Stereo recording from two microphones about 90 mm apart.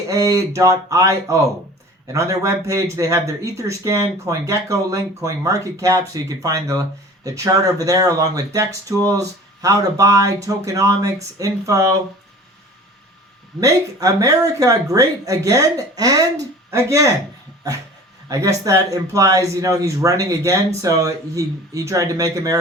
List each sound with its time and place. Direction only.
0.1 s speech: 40° right (ahead or behind)
13.6 s speech: 40° right (ahead or behind)
18.3 s speech: 40° right (ahead or behind)